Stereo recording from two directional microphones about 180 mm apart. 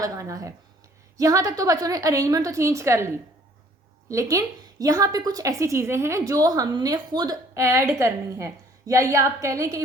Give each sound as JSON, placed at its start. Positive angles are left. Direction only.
{"t": 0.0, "sound": "a woman's voice", "side_deg": -15}
{"t": 4.1, "sound": "a woman's voice", "side_deg": -15}